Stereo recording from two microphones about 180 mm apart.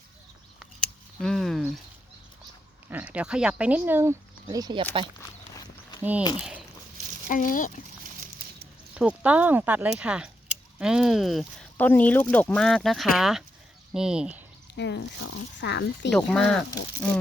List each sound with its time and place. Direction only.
1.2 s a sound: 5° left (ahead or behind)
2.9 s speech: 10° right (ahead or behind)
4.4 s speech: 25° right (ahead or behind)
6.0 s speech: 10° right (ahead or behind)
7.3 s speech: 50° left (ahead or behind)
9.0 s speech: 5° right (ahead or behind)
14.8 s speech: 75° left (ahead or behind)
16.1 s speech: 5° left (ahead or behind)